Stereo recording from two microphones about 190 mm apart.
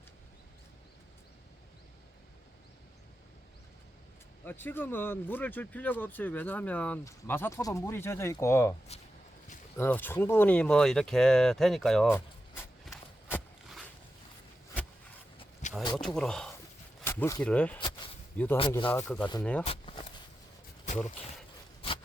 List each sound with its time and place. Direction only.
4.4 s speech: 10° left (ahead or behind)
9.7 s speech: 10° left (ahead or behind)
12.9 s a sound: centre (ahead or behind)
15.6 s a sound: 40° left (ahead or behind)
16.0 s speech: 5° left (ahead or behind)
17.0 s zipper: 15° left (ahead or behind)
17.4 s speech: 5° left (ahead or behind)
17.7 s a sound: 25° left (ahead or behind)
18.4 s speech: 10° left (ahead or behind)
19.6 s vehicle: 30° left (ahead or behind)